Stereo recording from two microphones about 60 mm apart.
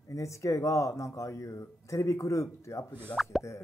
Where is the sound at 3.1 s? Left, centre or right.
Left.